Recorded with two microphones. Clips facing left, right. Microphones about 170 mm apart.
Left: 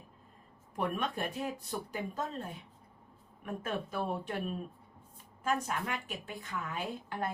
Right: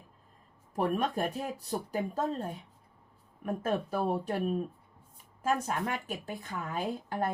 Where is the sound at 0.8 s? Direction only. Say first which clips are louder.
Right 5 dB; 40° right (ahead or behind).